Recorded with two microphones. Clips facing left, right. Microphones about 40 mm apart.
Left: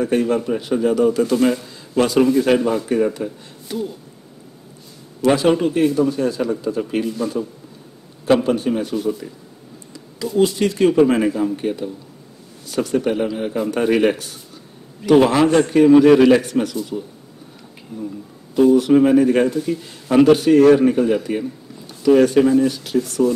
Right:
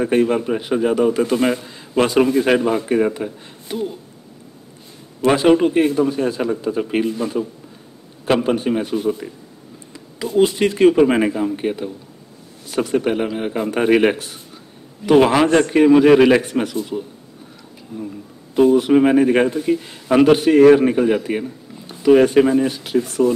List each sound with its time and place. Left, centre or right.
0.0 s a man's voice: right
5.2 s a man's voice: right
8.5 s a man's voice: right
18.5 s a man's voice: right